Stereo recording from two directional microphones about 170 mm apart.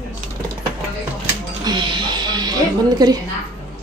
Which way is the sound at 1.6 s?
25° right (ahead or behind).